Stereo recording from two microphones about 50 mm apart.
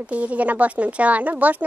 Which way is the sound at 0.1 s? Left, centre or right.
Right.